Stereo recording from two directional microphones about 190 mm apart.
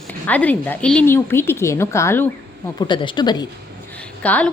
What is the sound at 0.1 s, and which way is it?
Speech, 10° left (ahead or behind).